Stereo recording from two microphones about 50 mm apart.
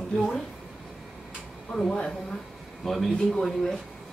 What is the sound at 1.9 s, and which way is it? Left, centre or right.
Speech, centre.